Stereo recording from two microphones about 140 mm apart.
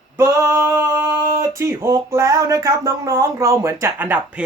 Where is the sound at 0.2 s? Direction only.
20° right (ahead or behind).